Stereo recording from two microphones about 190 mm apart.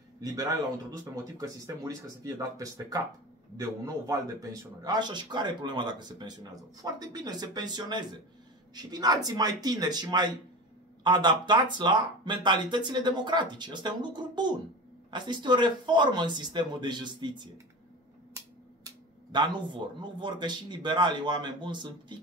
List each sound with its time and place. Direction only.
0.2 s speech: 20° right (ahead or behind)
18.9 s speech: 25° right (ahead or behind)